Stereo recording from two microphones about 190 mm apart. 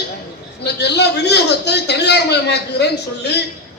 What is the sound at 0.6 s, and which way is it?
A man's voice, 60° left (ahead or behind).